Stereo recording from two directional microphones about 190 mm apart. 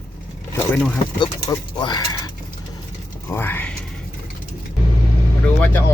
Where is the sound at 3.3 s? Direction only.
10° left (ahead or behind).